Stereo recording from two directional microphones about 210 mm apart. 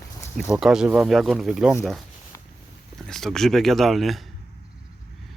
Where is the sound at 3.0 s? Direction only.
Centre (ahead or behind).